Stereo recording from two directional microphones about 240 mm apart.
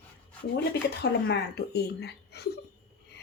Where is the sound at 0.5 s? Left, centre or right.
Left.